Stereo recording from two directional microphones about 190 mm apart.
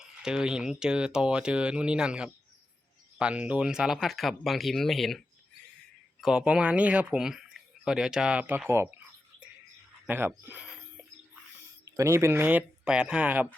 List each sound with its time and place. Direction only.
0.0 s speech: 5° right (ahead or behind)
6.2 s speech: 5° right (ahead or behind)
10.1 s speech: 10° right (ahead or behind)
11.9 s speech: 15° right (ahead or behind)